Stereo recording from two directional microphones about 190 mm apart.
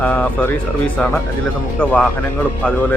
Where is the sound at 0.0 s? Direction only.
5° left (ahead or behind).